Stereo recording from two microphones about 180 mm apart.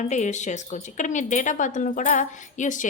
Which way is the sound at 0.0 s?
40° left (ahead or behind).